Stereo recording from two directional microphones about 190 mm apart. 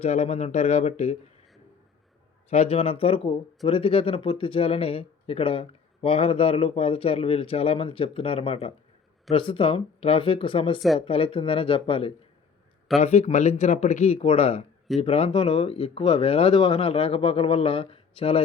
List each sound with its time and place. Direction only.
0.0 s speech: 35° left (ahead or behind)
2.5 s speech: 30° left (ahead or behind)
10.8 s speech: centre (ahead or behind)
11.0 s speech: 30° left (ahead or behind)